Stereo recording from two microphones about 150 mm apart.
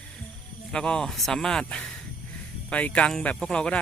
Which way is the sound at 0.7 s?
5° left (ahead or behind).